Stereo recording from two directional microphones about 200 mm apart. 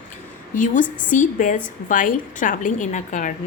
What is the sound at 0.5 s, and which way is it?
A woman's voice, 40° left (ahead or behind).